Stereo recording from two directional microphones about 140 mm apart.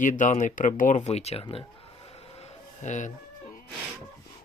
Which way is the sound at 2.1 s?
50° left (ahead or behind).